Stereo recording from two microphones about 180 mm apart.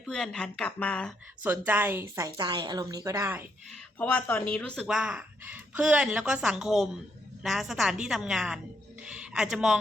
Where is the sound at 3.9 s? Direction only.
10° left (ahead or behind).